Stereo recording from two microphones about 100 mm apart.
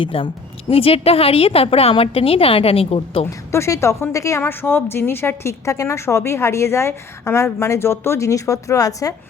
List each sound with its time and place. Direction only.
0.0 s a woman's voice: 65° left (ahead or behind)
3.2 s speech: 30° left (ahead or behind)